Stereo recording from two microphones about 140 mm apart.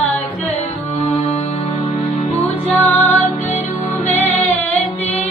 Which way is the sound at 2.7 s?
10° left (ahead or behind).